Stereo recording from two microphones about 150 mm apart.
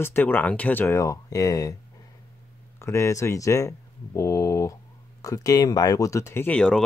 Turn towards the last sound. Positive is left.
turn(degrees=5)  # may be behind; listen again after turning